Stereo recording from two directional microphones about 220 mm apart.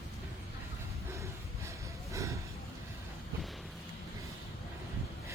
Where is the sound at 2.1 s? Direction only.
15° right (ahead or behind).